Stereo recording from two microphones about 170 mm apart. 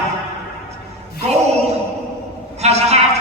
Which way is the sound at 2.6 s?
40° right (ahead or behind).